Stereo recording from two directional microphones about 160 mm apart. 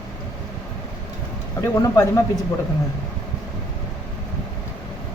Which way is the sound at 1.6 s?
20° left (ahead or behind).